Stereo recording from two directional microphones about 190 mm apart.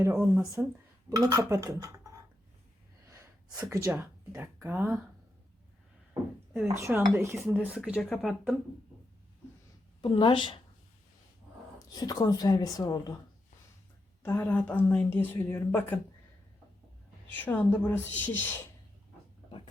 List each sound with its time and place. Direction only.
0.0 s speech: 10° right (ahead or behind)
3.8 s speech: 10° right (ahead or behind)
6.5 s speech: 10° right (ahead or behind)
7.3 s speech: centre (ahead or behind)
7.9 s speech: 5° left (ahead or behind)
10.0 s a woman's voice: 25° left (ahead or behind)
11.9 s a woman's voice: 20° left (ahead or behind)
14.2 s a woman's voice: 10° left (ahead or behind)
17.2 s a woman's voice: 10° left (ahead or behind)
19.5 s a sound: 25° left (ahead or behind)